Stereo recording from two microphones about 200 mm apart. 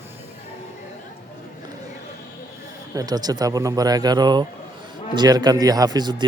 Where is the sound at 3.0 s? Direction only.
20° right (ahead or behind).